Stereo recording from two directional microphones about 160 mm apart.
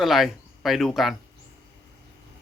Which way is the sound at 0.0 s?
Centre (ahead or behind).